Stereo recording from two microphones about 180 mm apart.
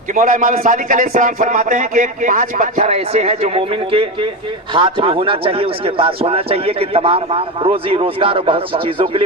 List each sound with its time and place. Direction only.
0.1 s a man's voice: 45° right (ahead or behind); by 9.2 s 30° right (ahead or behind)